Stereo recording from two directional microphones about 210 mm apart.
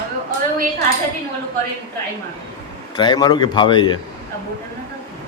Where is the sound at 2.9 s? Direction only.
20° left (ahead or behind).